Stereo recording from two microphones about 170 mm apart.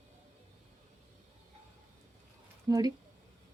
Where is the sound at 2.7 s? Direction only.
20° right (ahead or behind).